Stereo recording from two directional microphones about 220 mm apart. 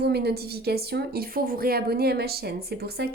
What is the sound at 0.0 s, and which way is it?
A woman's voice, 45° right (ahead or behind).